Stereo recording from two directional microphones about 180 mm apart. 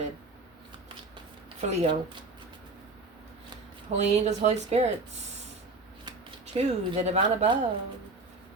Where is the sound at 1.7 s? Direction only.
35° right (ahead or behind).